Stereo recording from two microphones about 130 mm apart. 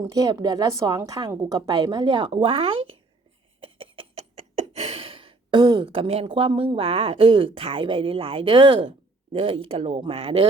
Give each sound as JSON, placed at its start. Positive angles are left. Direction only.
{"t": 0.1, "sound": "a woman's voice", "side_deg": -30}
{"t": 3.6, "sound": "a sound", "side_deg": -40}
{"t": 4.8, "sound": "sigh", "side_deg": -50}
{"t": 6.2, "sound": "a woman's voice", "side_deg": -40}